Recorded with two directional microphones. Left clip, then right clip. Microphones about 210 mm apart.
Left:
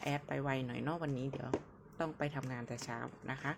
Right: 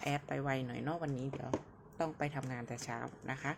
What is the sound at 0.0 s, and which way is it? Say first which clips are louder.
Speech: right 1 dB; centre (ahead or behind).